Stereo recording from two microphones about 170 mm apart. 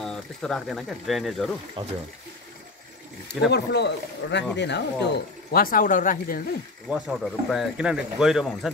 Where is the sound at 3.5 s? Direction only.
80° left; by 6.4 s 50° left (ahead or behind).